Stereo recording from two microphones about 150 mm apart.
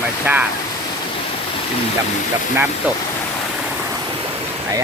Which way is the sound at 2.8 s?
10° right (ahead or behind).